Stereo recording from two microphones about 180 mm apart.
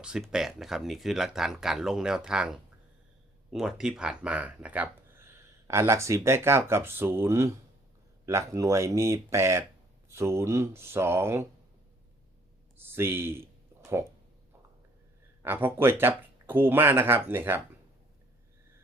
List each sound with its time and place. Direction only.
0.0 s speech: 5° right (ahead or behind)
12.9 s speech: 10° right (ahead or behind)
15.4 s speech: 10° right (ahead or behind)